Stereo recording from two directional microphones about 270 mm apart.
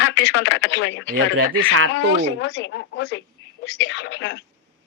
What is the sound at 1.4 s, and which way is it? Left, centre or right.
Speech, right.